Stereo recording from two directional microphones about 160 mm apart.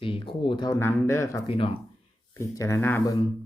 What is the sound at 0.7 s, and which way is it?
Speech, 15° left (ahead or behind).